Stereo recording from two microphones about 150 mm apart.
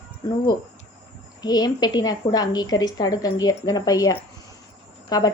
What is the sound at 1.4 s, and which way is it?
A woman's voice, 25° left (ahead or behind).